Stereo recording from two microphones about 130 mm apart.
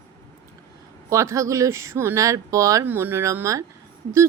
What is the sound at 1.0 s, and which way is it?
Speech, 20° right (ahead or behind).